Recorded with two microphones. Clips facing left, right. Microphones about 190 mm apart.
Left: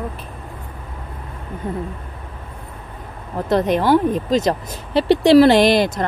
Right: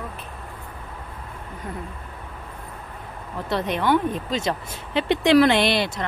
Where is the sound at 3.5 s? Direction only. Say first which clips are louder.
Left 6 dB; 40° left (ahead or behind).